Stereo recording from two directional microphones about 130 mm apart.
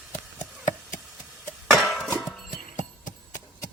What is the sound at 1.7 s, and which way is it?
Music, centre (ahead or behind).